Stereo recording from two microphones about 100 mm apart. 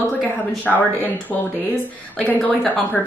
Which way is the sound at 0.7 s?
5° left (ahead or behind).